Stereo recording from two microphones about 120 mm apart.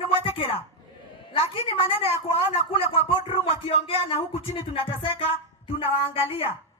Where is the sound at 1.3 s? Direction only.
50° left (ahead or behind).